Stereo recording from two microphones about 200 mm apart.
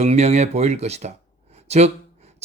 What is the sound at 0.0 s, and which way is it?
Speech, 35° right (ahead or behind).